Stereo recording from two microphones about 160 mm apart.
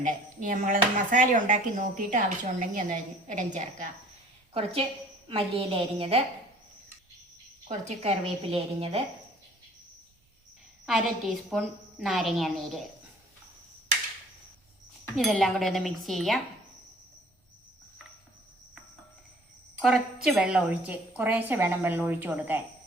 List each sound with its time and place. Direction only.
0.0 s speech: 55° right (ahead or behind)
4.5 s a woman's voice: 35° right (ahead or behind)
7.7 s a woman's voice: 45° right (ahead or behind)
10.8 s a woman's voice: centre (ahead or behind)
15.1 s a woman's voice: centre (ahead or behind)
19.8 s a woman's voice: 5° right (ahead or behind)